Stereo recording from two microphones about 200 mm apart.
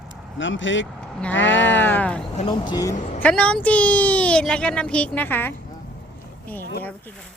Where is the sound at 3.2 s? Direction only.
5° left (ahead or behind).